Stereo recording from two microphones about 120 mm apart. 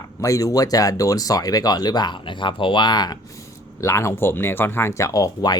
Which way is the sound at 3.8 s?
25° left (ahead or behind).